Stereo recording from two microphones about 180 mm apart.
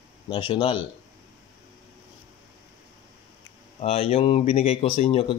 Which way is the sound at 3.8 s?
30° left (ahead or behind).